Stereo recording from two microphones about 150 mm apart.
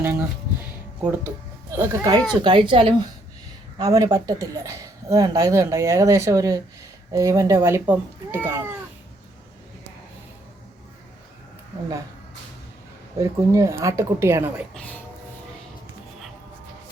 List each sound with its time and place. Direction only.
0.0 s speech: 15° right (ahead or behind)
1.7 s speech: 15° right (ahead or behind)
2.3 s speech: 30° right (ahead or behind)
3.8 s speech: 25° right (ahead or behind)
13.1 s speech: 20° right (ahead or behind)
14.7 s speech: 10° left (ahead or behind)